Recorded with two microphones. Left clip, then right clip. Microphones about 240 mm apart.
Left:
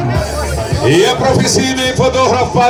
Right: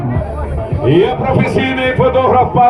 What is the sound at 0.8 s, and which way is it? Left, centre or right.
Speech, left.